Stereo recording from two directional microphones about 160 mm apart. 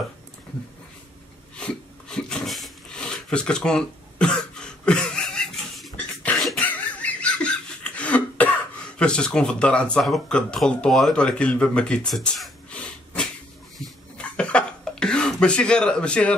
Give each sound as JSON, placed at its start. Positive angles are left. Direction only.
{"t": 1.6, "sound": "a sound", "side_deg": 5}
{"t": 8.9, "sound": "speech", "side_deg": 5}
{"t": 13.7, "sound": "cough", "side_deg": 5}